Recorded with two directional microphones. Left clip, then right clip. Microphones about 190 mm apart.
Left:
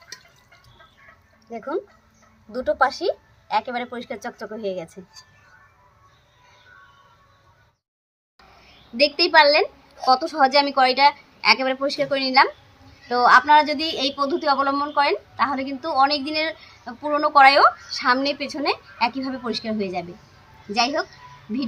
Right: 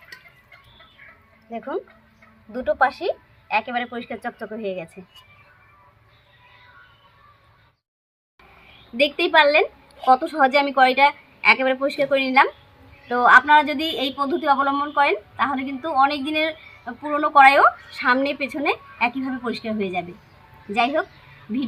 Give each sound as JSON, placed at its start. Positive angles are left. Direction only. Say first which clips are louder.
{"t": 1.5, "sound": "a woman's voice", "louder": "left 1 dB", "side_deg": 20}
{"t": 9.0, "sound": "speech", "louder": "left 1 dB", "side_deg": 0}